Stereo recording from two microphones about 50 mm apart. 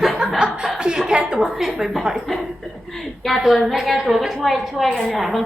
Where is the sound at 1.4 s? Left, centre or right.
Centre.